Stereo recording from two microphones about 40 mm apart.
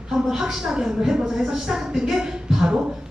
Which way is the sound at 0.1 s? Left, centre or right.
Centre.